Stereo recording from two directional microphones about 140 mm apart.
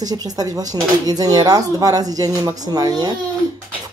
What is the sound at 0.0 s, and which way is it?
Speech, 25° right (ahead or behind).